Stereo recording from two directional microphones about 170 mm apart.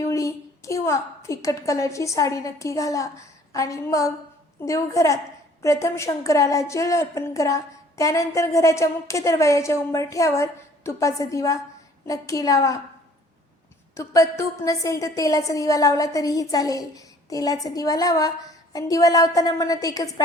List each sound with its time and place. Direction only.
0.0 s a woman's voice: 20° left (ahead or behind)
13.9 s a woman's voice: 20° left (ahead or behind)